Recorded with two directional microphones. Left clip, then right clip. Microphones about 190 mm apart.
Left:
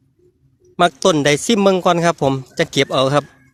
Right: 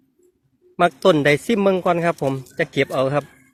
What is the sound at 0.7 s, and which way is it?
A man's voice, 30° left (ahead or behind).